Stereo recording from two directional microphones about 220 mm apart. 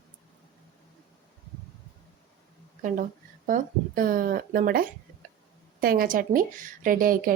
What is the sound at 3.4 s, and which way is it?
A woman's voice, 40° right (ahead or behind).